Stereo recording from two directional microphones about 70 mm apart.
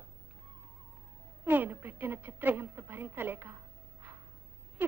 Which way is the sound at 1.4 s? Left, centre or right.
Right.